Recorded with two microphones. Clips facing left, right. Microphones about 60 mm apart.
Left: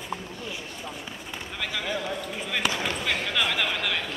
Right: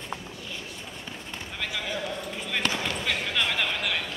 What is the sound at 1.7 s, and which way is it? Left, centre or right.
Basketball bounce, centre.